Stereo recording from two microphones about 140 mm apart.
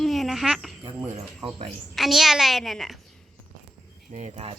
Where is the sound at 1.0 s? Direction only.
40° right (ahead or behind).